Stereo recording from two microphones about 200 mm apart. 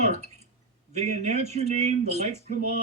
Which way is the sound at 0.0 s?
35° right (ahead or behind).